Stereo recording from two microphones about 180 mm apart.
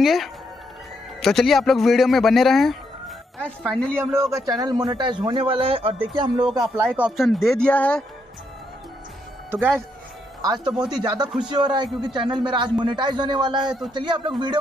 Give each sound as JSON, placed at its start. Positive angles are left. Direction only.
{"t": 0.0, "sound": "speech", "side_deg": 0}
{"t": 3.9, "sound": "a man's voice", "side_deg": -15}
{"t": 6.8, "sound": "speech", "side_deg": -5}
{"t": 9.5, "sound": "a man's voice", "side_deg": -10}